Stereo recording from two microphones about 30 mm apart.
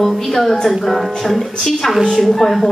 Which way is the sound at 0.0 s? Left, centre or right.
Centre.